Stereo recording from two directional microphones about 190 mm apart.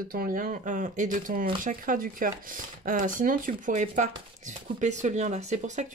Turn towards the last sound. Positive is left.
turn(degrees=-35)  # may be behind; listen again after turning